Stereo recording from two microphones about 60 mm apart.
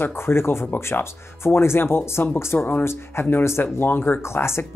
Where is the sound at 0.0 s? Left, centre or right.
Left.